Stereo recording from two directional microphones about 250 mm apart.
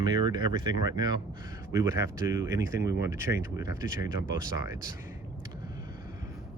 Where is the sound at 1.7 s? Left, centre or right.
Centre.